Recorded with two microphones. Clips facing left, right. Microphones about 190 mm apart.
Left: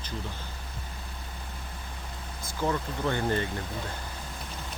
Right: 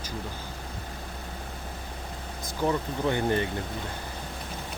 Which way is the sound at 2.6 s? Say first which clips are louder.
Right 2 dB; 15° right (ahead or behind).